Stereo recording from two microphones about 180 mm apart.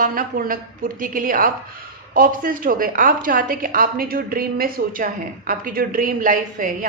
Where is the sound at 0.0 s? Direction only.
50° right (ahead or behind).